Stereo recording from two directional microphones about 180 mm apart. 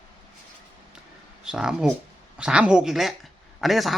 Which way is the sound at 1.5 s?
5° right (ahead or behind).